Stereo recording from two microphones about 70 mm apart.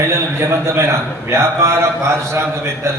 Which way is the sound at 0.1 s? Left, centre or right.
Right.